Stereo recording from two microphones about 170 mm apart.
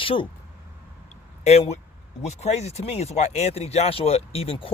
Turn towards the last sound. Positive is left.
turn(degrees=35)  # may be behind; listen again after turning